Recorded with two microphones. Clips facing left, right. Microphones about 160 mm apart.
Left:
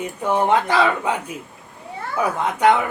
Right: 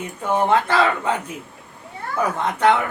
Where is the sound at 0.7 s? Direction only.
10° left (ahead or behind).